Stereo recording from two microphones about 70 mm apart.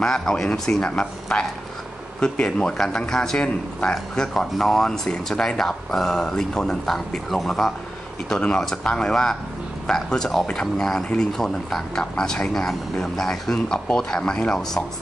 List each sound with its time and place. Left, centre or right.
0.0 s a man's voice: centre